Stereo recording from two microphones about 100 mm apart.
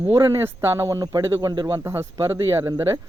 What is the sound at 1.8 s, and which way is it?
Speech, 25° right (ahead or behind).